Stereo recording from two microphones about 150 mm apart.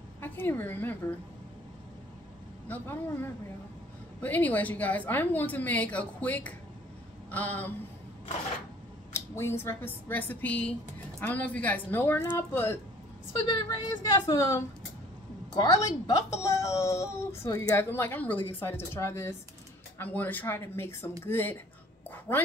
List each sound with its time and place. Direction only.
0.2 s a woman's voice: 15° left (ahead or behind)
2.7 s a woman's voice: 10° left (ahead or behind)
9.1 s a woman's voice: 15° left (ahead or behind)